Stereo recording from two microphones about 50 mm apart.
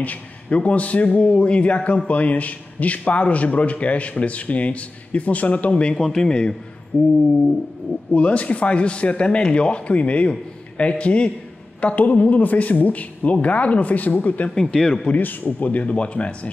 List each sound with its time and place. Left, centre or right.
0.0 s a man's voice: left
5.9 s a man's voice: centre
6.9 s a man's voice: left